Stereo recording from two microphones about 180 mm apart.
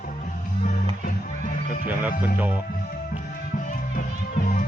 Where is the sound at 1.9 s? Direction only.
10° right (ahead or behind).